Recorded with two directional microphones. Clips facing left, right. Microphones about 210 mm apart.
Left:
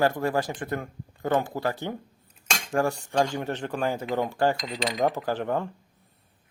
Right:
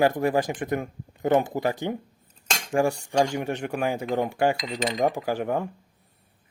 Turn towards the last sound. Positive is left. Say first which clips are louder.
# right 1 dB
turn(degrees=-10)  # may be behind; listen again after turning